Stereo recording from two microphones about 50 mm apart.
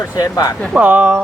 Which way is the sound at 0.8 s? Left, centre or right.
Right.